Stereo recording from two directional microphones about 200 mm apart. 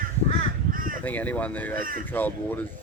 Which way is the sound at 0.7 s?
45° right (ahead or behind).